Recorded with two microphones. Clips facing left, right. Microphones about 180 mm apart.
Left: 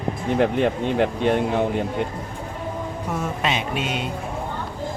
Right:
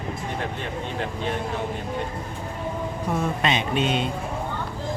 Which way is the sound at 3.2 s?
5° left (ahead or behind).